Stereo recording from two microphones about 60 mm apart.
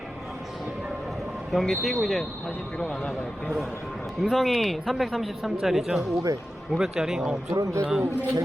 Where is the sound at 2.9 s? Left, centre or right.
Left.